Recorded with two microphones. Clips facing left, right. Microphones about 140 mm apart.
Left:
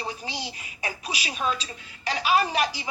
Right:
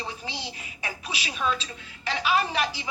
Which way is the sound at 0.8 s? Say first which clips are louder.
Left 2 dB; 40° left (ahead or behind).